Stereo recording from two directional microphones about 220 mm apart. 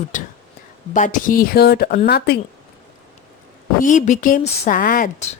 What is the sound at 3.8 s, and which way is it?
A woman's voice, 35° left (ahead or behind).